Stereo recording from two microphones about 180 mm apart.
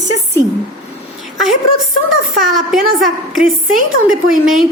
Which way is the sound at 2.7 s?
Centre (ahead or behind).